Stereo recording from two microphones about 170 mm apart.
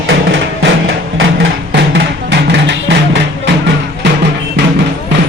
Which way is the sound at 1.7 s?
85° right.